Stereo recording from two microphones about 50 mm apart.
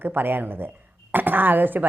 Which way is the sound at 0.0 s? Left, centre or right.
Right.